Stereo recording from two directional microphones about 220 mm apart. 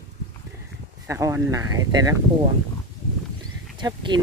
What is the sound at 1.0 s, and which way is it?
Speech, 15° right (ahead or behind).